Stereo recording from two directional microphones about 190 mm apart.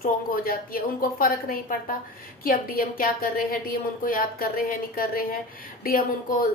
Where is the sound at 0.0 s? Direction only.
50° left (ahead or behind).